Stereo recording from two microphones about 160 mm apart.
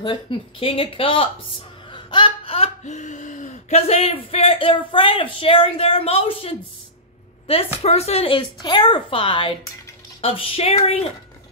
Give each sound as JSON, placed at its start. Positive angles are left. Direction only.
{"t": 0.0, "sound": "speech", "side_deg": 30}
{"t": 1.9, "sound": "a sound", "side_deg": 30}
{"t": 7.5, "sound": "speech", "side_deg": 35}